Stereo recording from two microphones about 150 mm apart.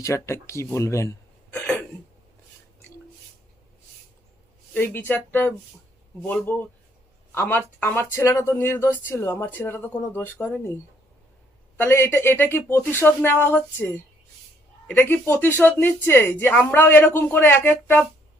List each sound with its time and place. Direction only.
0.0 s speech: 20° left (ahead or behind)
1.5 s cough: 10° left (ahead or behind)
4.7 s speech: 10° left (ahead or behind)
11.8 s speech: 15° left (ahead or behind)